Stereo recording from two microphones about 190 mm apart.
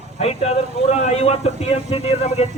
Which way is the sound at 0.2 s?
30° left (ahead or behind).